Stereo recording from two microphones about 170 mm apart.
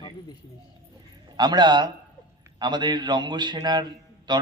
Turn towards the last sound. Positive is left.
turn(degrees=-25)  # may be behind; listen again after turning